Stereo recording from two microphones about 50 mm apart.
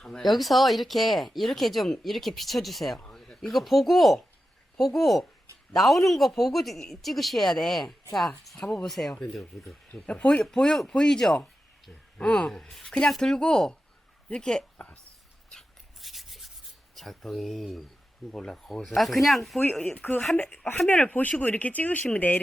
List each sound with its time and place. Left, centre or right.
0.0 s speech: centre
9.9 s speech: left
10.4 s speech: centre
12.7 s speech: centre
16.0 s rub: centre
16.9 s speech: centre
20.0 s speech: left